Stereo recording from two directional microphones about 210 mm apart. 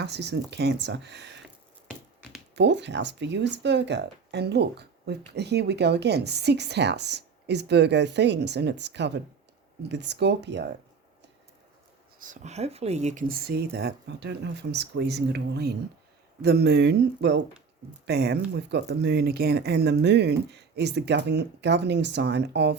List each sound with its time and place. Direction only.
0.0 s speech: 55° right (ahead or behind)
2.6 s speech: 55° right (ahead or behind)
12.2 s speech: 35° right (ahead or behind); by 22.7 s 55° right (ahead or behind)